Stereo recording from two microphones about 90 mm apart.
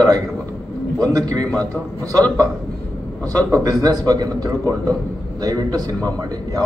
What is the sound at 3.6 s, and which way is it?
A man's voice, 40° right (ahead or behind).